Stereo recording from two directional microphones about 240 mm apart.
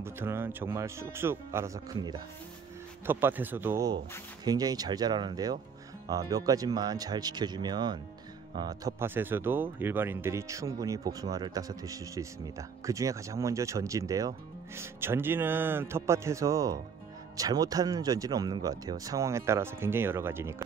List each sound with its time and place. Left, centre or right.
0.0 s speech: centre